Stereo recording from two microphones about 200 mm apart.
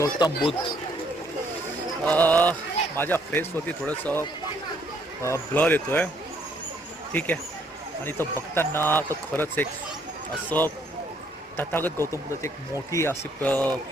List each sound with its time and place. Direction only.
0.0 s speech: 20° left (ahead or behind)
2.0 s speech: 5° left (ahead or behind)
7.1 s speech: 10° left (ahead or behind)